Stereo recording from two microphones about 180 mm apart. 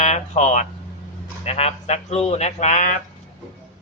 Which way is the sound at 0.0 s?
40° left (ahead or behind).